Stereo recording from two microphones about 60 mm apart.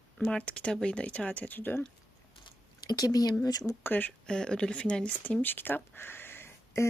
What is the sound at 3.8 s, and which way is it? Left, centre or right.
Speech, left.